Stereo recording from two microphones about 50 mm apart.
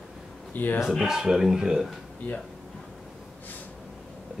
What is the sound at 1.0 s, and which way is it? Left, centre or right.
Speech, centre.